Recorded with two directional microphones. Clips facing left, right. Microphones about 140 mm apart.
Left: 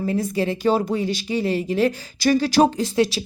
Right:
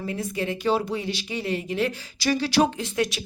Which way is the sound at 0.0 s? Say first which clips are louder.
Left 6 dB; 40° left (ahead or behind).